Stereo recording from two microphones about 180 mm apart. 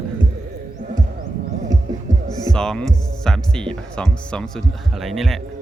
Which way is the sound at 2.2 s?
20° left (ahead or behind).